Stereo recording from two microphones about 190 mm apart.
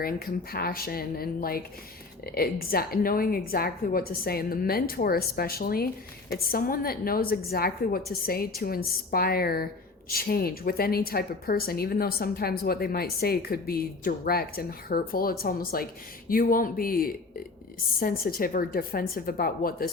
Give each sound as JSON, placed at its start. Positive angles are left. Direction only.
{"t": 0.0, "sound": "a woman's voice", "side_deg": 50}